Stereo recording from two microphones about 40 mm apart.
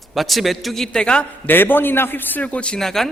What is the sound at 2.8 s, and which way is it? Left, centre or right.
Speech, centre.